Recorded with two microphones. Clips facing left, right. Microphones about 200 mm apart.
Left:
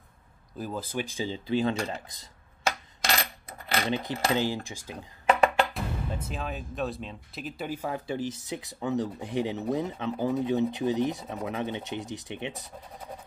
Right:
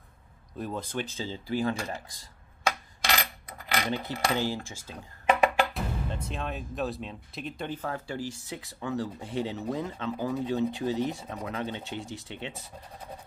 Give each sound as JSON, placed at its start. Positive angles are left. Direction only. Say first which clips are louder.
{"t": 0.6, "sound": "speech", "louder": "even", "side_deg": 5}
{"t": 3.2, "sound": "coin", "louder": "left 1 dB", "side_deg": 30}
{"t": 4.0, "sound": "speech", "louder": "left 2 dB", "side_deg": 20}
{"t": 5.7, "sound": "speech", "louder": "even", "side_deg": 5}